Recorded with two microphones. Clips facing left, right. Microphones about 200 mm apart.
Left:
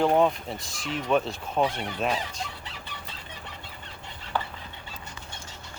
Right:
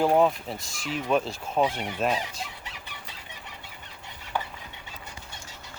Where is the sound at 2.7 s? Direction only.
15° right (ahead or behind).